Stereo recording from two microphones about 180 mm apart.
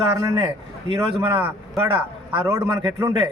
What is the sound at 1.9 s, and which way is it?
Speech, 30° right (ahead or behind).